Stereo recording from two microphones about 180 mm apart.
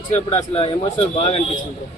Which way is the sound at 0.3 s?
30° left (ahead or behind).